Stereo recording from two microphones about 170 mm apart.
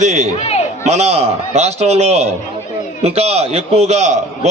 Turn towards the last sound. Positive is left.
turn(degrees=-40)  # may be behind; listen again after turning